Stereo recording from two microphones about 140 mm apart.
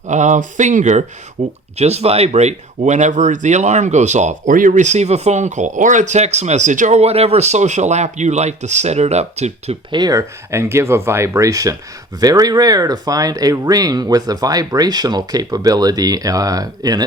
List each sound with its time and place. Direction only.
0.1 s speech: 60° right (ahead or behind)
9.9 s speech: 25° right (ahead or behind)